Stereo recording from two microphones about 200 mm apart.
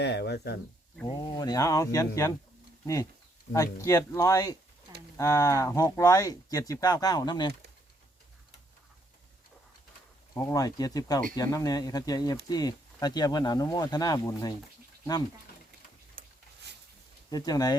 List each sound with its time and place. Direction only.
0.0 s speech: 55° left (ahead or behind)
1.0 s speech: 20° left (ahead or behind)
10.3 s speech: 15° left (ahead or behind)
16.7 s a sound: 55° right (ahead or behind)
17.3 s speech: 20° left (ahead or behind)